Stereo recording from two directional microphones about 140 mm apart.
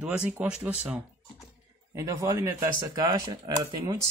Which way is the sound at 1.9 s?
25° right (ahead or behind).